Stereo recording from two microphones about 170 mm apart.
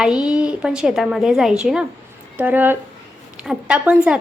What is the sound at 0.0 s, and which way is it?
A woman's voice, 5° right (ahead or behind).